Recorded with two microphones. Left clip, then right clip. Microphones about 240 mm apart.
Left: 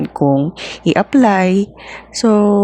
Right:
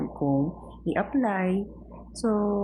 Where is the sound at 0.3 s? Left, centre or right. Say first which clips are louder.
Left 11 dB; left.